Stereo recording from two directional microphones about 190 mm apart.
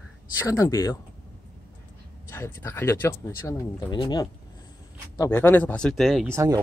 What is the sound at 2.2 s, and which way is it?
Speech, 15° left (ahead or behind).